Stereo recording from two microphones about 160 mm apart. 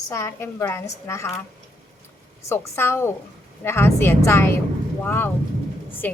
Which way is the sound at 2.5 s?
15° left (ahead or behind).